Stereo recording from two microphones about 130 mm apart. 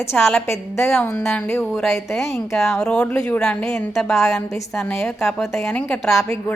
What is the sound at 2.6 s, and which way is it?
Speech, centre (ahead or behind).